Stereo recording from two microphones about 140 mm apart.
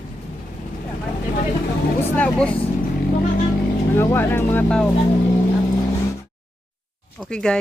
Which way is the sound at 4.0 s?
15° left (ahead or behind).